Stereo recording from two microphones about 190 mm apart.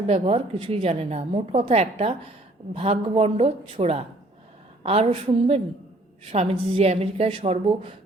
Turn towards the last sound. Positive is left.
turn(degrees=-30)  # may be behind; listen again after turning